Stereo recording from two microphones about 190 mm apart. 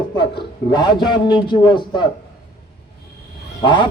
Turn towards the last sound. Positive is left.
turn(degrees=25)  # may be behind; listen again after turning